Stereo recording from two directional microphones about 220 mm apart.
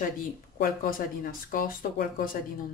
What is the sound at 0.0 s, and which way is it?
Speech, 40° left (ahead or behind).